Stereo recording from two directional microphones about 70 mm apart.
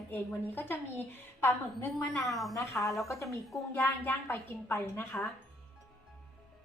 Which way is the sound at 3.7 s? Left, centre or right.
Left.